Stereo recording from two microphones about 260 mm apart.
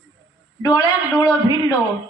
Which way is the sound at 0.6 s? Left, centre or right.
Centre.